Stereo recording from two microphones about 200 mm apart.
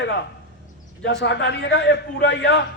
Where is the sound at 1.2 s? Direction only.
60° left (ahead or behind).